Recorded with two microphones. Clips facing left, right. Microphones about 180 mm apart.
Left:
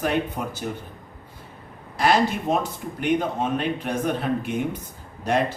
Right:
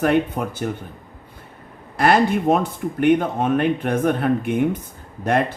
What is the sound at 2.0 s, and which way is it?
A man's voice, 55° right (ahead or behind).